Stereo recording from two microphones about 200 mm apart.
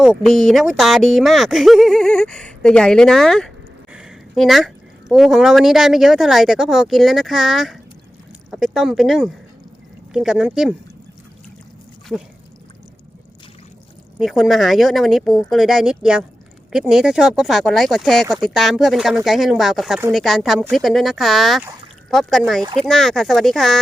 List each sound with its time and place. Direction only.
0.0 s a woman's voice: centre (ahead or behind)
14.2 s a woman's voice: centre (ahead or behind)